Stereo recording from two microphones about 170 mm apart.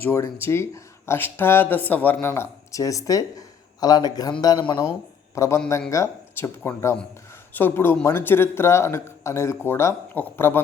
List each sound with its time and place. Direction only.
0.0 s speech: 15° left (ahead or behind)